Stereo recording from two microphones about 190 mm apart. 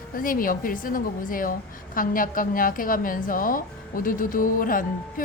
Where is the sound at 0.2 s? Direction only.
45° left (ahead or behind).